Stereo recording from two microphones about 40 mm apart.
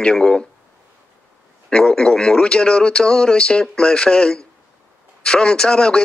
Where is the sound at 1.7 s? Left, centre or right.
Centre.